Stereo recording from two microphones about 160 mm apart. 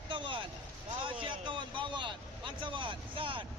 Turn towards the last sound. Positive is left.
turn(degrees=-35)  # may be behind; listen again after turning